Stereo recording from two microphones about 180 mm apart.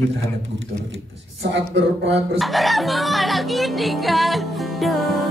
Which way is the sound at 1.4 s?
75° right (ahead or behind).